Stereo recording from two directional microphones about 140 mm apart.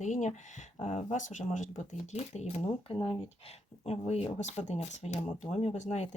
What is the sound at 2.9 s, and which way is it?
Speech, 40° left (ahead or behind).